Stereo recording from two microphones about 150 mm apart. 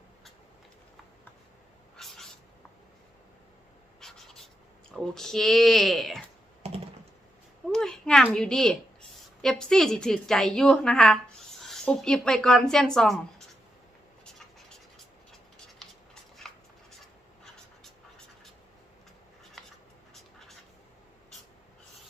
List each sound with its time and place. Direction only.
2.0 s cat: centre (ahead or behind)
4.0 s writing: 5° left (ahead or behind)
4.9 s a woman's voice: 5° left (ahead or behind)
6.6 s computer keyboard: 45° right (ahead or behind)
7.7 s a woman's voice: 5° left (ahead or behind)
14.9 s scratch: centre (ahead or behind)